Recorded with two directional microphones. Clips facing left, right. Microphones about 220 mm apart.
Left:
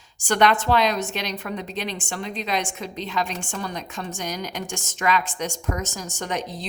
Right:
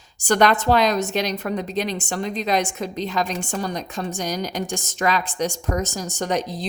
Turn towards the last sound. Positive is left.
turn(degrees=-35)  # may be behind; listen again after turning